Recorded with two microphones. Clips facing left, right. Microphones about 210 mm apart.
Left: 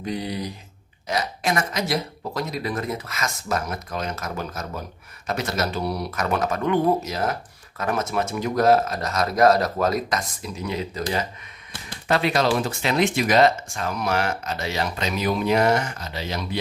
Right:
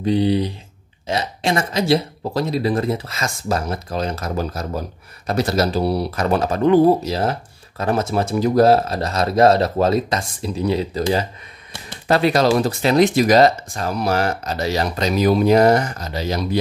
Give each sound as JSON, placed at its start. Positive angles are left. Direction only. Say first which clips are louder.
{"t": 0.0, "sound": "speech", "louder": "right 11 dB", "side_deg": -30}
{"t": 12.1, "sound": "speech", "louder": "right 5 dB", "side_deg": -40}